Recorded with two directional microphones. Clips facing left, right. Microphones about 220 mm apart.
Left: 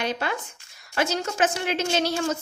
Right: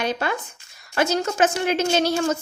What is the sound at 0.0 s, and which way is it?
A woman's voice, 45° right (ahead or behind).